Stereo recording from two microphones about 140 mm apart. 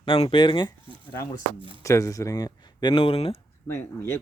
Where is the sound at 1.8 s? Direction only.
20° left (ahead or behind); by 3.3 s 40° left (ahead or behind).